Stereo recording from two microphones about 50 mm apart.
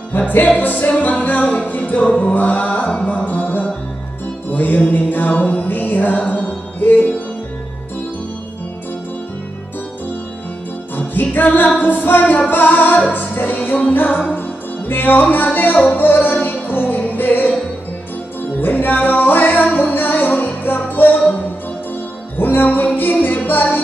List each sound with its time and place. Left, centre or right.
0.1 s music: left
2.0 s music: left
2.3 s music: left
11.0 s music: left
18.6 s music: left
22.4 s music: left